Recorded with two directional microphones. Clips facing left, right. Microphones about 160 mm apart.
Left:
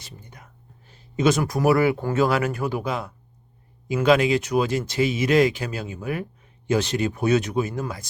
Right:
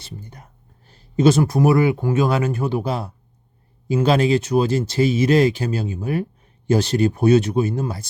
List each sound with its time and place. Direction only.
0.0 s speech: 35° right (ahead or behind)